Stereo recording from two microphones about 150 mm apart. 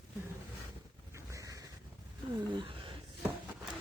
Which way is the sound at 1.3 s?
20° right (ahead or behind).